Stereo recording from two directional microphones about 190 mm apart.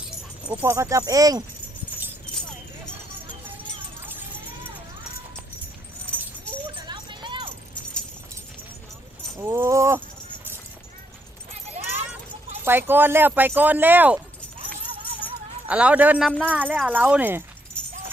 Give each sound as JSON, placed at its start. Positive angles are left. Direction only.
{"t": 0.5, "sound": "speech", "side_deg": -15}
{"t": 6.8, "sound": "a sound", "side_deg": -25}
{"t": 9.4, "sound": "speech", "side_deg": -15}
{"t": 11.8, "sound": "clip-clop", "side_deg": -35}
{"t": 12.6, "sound": "speech", "side_deg": -10}
{"t": 15.6, "sound": "speech", "side_deg": -5}